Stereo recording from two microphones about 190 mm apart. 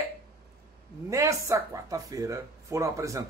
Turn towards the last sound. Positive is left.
turn(degrees=-15)  # may be behind; listen again after turning